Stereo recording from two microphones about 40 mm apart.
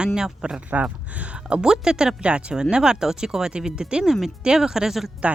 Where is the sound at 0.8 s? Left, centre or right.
Right; by 2.1 s centre.